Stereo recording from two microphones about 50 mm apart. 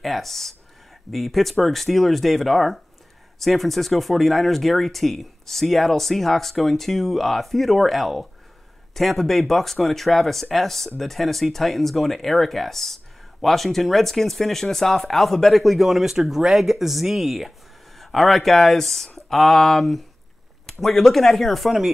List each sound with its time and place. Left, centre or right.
0.0 s speech: centre